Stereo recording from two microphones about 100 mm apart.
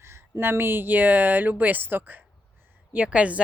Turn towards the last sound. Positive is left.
turn(degrees=-10)  # may be behind; listen again after turning